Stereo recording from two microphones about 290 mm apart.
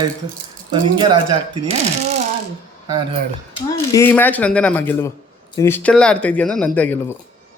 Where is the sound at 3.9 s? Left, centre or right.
Centre.